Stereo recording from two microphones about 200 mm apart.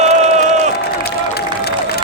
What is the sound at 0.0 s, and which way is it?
Crowd, 35° right (ahead or behind).